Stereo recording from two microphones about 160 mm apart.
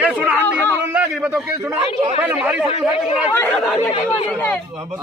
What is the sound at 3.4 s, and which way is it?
Speech, 10° left (ahead or behind).